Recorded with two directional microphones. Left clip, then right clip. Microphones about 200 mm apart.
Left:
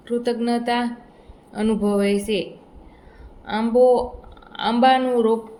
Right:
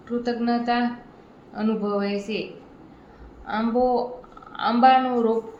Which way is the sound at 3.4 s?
55° left (ahead or behind).